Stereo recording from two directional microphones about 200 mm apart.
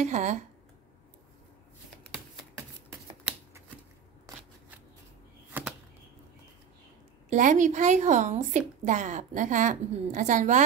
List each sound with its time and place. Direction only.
0.0 s speech: 35° right (ahead or behind)
5.5 s a sound: 5° right (ahead or behind)
7.2 s speech: 40° right (ahead or behind)